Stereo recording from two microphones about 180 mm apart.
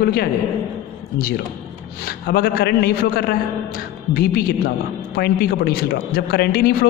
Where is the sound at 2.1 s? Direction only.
60° left (ahead or behind).